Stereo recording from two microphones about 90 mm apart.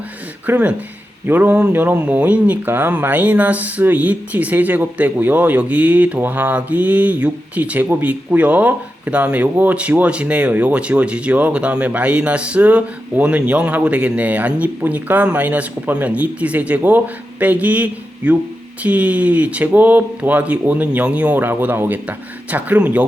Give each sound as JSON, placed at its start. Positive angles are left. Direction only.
{"t": 0.4, "sound": "speech", "side_deg": -15}